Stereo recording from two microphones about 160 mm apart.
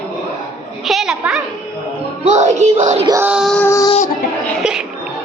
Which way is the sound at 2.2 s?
45° right (ahead or behind).